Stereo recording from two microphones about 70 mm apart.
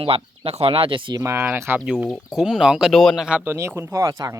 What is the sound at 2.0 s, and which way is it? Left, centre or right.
Speech, centre.